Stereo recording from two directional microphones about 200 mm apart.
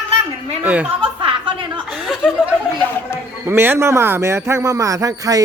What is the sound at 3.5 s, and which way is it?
A man's voice, 10° right (ahead or behind).